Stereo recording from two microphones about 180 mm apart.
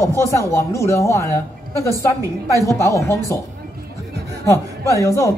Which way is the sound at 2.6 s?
15° left (ahead or behind).